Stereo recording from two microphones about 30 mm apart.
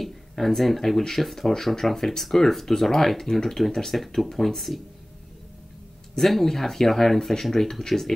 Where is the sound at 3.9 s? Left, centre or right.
Centre.